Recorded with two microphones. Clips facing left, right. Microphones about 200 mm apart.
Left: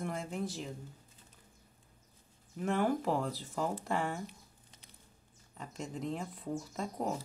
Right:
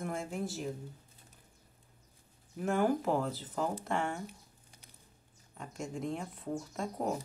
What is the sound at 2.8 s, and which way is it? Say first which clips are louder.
Speech: right 2 dB; centre (ahead or behind).